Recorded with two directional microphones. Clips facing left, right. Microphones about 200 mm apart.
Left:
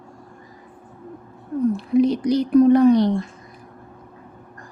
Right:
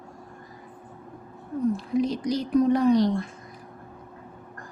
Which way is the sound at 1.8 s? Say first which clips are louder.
Left 7 dB; 65° left (ahead or behind).